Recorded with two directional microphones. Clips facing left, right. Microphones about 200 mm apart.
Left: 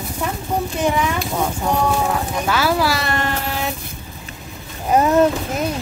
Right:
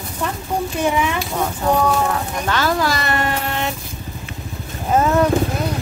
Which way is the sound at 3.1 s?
5° right (ahead or behind).